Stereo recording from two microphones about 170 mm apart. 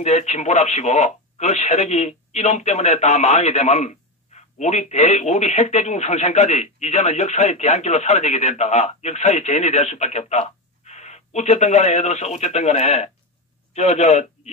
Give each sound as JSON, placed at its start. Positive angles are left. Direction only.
{"t": 0.0, "sound": "speech", "side_deg": 40}